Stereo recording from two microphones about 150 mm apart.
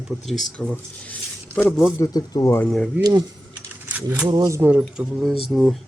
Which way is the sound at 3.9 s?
10° right (ahead or behind).